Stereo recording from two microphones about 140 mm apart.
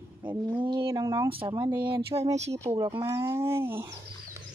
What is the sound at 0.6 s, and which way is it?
Speech, 35° right (ahead or behind).